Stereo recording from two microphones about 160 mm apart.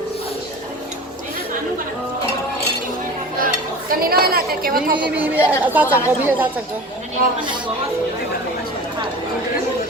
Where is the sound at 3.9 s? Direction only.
65° right (ahead or behind).